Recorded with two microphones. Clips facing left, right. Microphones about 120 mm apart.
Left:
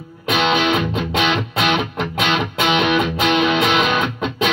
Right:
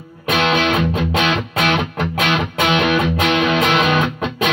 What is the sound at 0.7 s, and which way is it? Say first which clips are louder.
Music: right 1 dB; centre (ahead or behind).